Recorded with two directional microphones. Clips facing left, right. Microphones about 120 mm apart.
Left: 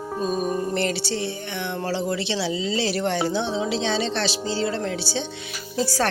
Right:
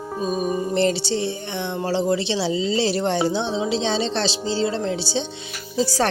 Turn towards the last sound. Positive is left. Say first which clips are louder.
# right 2 dB
turn(degrees=-20)  # may be behind; listen again after turning